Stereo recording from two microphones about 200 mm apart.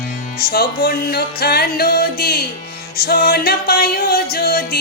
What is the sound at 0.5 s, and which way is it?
Music, 50° left (ahead or behind).